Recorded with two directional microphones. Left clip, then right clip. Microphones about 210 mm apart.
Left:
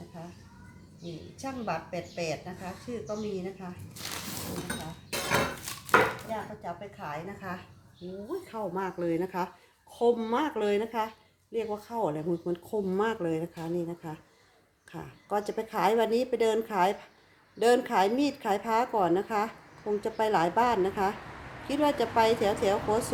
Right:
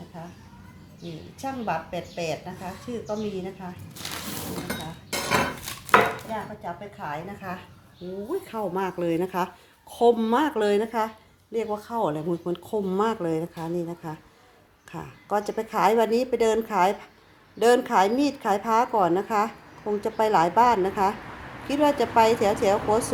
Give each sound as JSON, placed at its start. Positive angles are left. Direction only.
{"t": 1.4, "sound": "a woman's voice", "side_deg": -15}
{"t": 6.3, "sound": "a woman's voice", "side_deg": -10}
{"t": 8.4, "sound": "a woman's voice", "side_deg": -30}